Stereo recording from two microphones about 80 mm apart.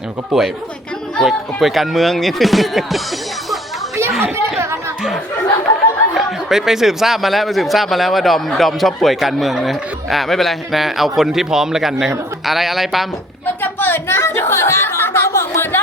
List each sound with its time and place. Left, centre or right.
0.3 s speech: centre
4.2 s speech: right
6.1 s speech: centre
13.6 s a sound: left